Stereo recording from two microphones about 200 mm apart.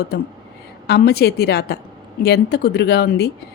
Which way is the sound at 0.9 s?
55° left (ahead or behind).